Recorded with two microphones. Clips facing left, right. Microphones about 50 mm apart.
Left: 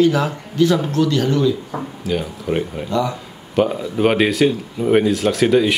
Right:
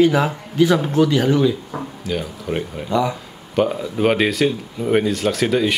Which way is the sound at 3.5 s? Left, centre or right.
Centre.